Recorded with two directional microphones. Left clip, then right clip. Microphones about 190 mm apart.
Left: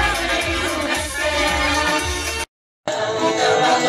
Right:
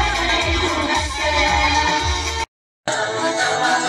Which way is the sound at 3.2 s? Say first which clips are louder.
Left 4 dB; 15° left (ahead or behind).